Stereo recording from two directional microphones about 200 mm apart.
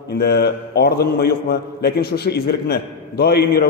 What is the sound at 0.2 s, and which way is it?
A man's voice, 50° left (ahead or behind).